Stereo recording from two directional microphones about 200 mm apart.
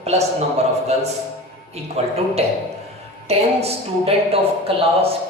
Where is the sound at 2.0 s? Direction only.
30° right (ahead or behind).